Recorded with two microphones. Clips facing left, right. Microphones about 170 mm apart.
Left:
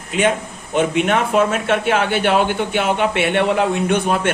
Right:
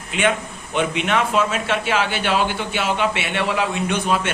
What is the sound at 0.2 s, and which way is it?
A man's voice, 45° left (ahead or behind).